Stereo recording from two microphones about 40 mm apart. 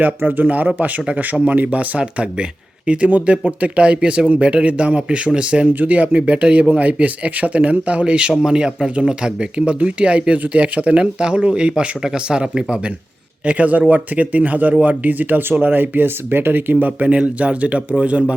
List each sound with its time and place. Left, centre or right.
0.2 s speech: right
0.4 s a man's voice: right
5.6 s a man's voice: right
13.4 s speech: right
17.2 s a man's voice: right